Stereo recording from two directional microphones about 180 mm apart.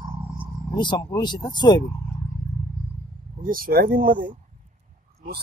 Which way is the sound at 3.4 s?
50° right (ahead or behind).